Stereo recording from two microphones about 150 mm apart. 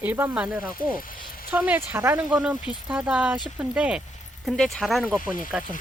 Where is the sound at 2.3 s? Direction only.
5° right (ahead or behind).